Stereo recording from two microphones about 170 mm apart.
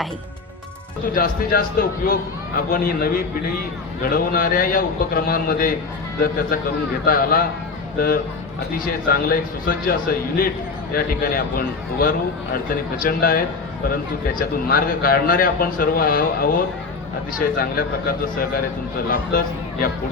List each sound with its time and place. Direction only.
1.0 s a man's voice: 60° left (ahead or behind)
7.0 s a man's voice: 60° left (ahead or behind)
19.1 s speech: 60° left (ahead or behind)